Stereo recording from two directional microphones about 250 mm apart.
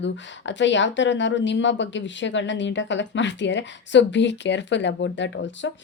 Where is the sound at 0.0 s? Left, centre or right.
Left.